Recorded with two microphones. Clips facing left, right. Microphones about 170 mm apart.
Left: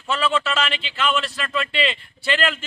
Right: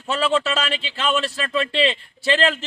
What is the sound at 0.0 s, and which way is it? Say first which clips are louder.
Speech: right 2 dB; 35° right (ahead or behind).